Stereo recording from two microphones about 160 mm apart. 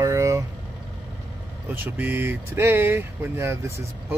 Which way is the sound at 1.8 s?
10° right (ahead or behind).